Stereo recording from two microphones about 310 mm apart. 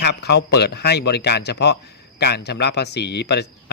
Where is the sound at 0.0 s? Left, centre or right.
Left.